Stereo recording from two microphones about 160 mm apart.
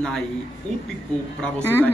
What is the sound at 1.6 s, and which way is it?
Speech, 10° left (ahead or behind).